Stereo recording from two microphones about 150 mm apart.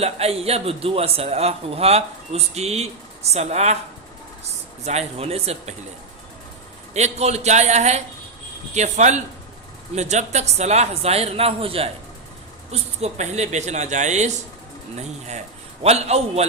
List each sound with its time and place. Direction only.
0.0 s a man's voice: 45° right (ahead or behind)
4.9 s a man's voice: 45° right (ahead or behind)
6.9 s a man's voice: 45° right (ahead or behind)
15.8 s a man's voice: 45° right (ahead or behind)